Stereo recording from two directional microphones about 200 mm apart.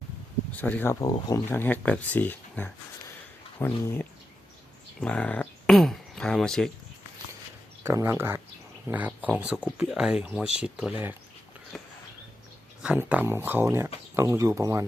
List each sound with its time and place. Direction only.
0.5 s speech: 10° left (ahead or behind)
7.9 s speech: 15° right (ahead or behind)
8.9 s a sound: 10° right (ahead or behind)
9.4 s speech: 5° right (ahead or behind)
11.7 s a sound: centre (ahead or behind)
12.8 s speech: 5° right (ahead or behind)